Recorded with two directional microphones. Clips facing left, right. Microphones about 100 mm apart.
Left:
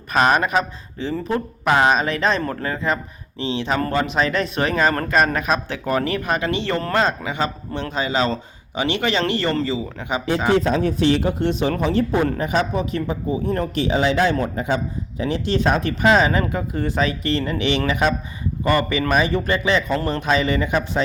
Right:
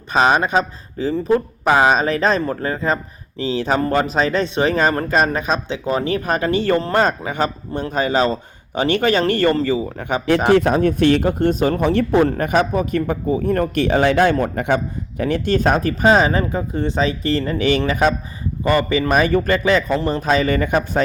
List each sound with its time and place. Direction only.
0.1 s speech: 30° right (ahead or behind)
3.8 s speech: 20° right (ahead or behind)
4.0 s speech: 35° right (ahead or behind)
10.5 s speech: 60° right (ahead or behind)
11.8 s a man's voice: 60° right (ahead or behind); by 18.1 s 40° right (ahead or behind)
18.6 s speech: 30° right (ahead or behind)
19.1 s speech: 45° right (ahead or behind)